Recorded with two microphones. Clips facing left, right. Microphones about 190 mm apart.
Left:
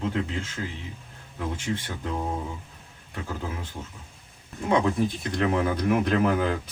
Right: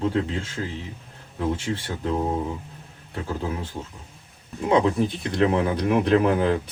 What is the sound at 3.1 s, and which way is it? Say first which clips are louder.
Speech: right 5 dB; 35° right (ahead or behind).